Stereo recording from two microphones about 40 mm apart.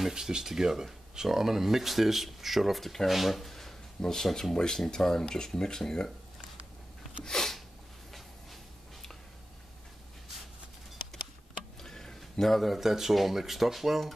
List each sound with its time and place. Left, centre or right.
0.1 s speech: centre
7.2 s sneeze: centre
11.8 s speech: centre